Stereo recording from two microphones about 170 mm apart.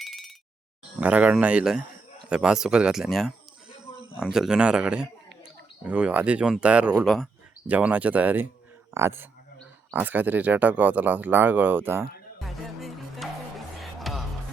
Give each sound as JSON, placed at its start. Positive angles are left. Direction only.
{"t": 0.0, "sound": "a sound", "side_deg": 0}
{"t": 0.9, "sound": "speech", "side_deg": -10}
{"t": 3.9, "sound": "a sound", "side_deg": 30}
{"t": 4.2, "sound": "speech", "side_deg": -5}
{"t": 7.7, "sound": "speech", "side_deg": -10}
{"t": 12.4, "sound": "music", "side_deg": 0}